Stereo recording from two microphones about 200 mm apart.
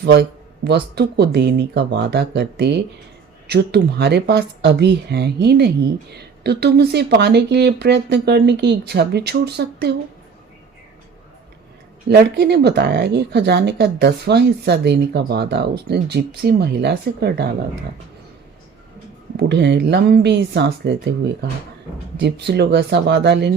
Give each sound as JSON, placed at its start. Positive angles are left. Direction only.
{"t": 0.0, "sound": "speech", "side_deg": -55}
{"t": 12.0, "sound": "speech", "side_deg": -55}
{"t": 19.4, "sound": "speech", "side_deg": -60}